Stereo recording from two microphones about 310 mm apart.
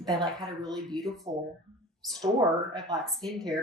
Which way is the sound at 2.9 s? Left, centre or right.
Centre.